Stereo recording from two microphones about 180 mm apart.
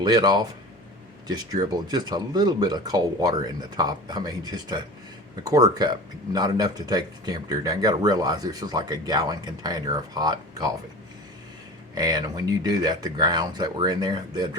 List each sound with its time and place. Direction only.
0.0 s speech: 25° right (ahead or behind)
11.9 s speech: 20° right (ahead or behind)